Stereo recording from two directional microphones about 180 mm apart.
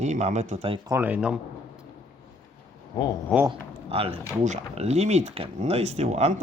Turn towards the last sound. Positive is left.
turn(degrees=-40)  # may be behind; listen again after turning